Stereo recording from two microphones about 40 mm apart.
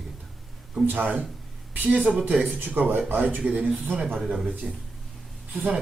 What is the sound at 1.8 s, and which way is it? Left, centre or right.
Speech, right.